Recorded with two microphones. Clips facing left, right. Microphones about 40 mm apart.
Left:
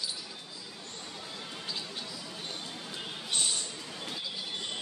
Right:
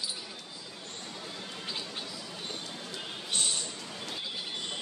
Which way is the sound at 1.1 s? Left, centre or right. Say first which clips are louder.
Even; centre.